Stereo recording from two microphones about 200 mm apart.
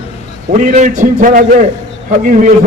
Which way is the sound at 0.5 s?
40° right (ahead or behind).